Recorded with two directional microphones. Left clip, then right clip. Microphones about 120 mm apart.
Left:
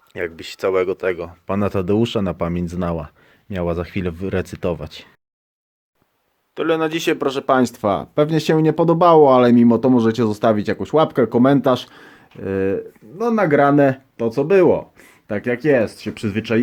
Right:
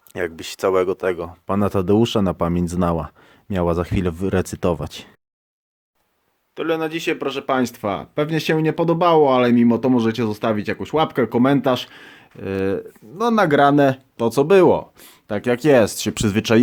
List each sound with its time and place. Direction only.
0.1 s speech: 40° right (ahead or behind)
6.5 s speech: 5° left (ahead or behind)
6.9 s speech: 20° left (ahead or behind); by 14.0 s 15° right (ahead or behind)
14.2 s speech: 35° right (ahead or behind)